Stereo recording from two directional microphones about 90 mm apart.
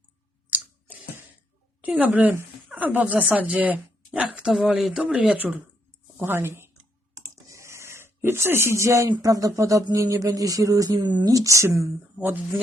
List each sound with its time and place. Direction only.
0.5 s chewing: 20° right (ahead or behind)
2.0 s speech: 15° right (ahead or behind)
6.1 s speech: 25° right (ahead or behind)
7.3 s a sound: 35° right (ahead or behind)
9.2 s speech: 40° right (ahead or behind)
10.9 s speech: 55° right (ahead or behind); by 11.7 s 35° right (ahead or behind)